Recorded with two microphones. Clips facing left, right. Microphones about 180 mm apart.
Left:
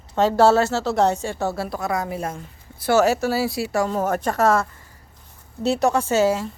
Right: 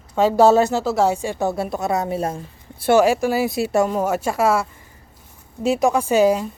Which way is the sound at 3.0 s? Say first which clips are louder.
Right 2 dB; 15° right (ahead or behind).